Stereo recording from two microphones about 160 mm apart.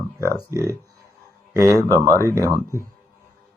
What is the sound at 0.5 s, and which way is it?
Speech, 20° right (ahead or behind).